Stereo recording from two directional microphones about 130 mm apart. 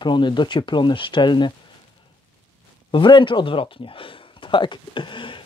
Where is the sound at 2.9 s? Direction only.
35° left (ahead or behind).